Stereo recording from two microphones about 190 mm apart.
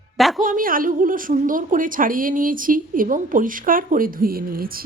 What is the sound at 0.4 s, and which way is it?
A woman's voice, 45° right (ahead or behind).